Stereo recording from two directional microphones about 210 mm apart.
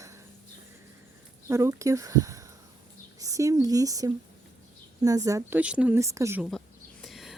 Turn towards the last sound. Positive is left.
turn(degrees=0)  # may be behind; listen again after turning